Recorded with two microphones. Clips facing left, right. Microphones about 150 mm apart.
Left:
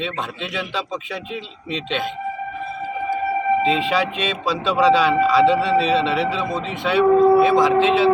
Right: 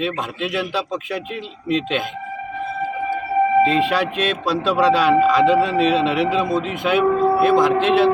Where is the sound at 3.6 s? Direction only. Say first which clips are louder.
Right 1 dB; 5° right (ahead or behind).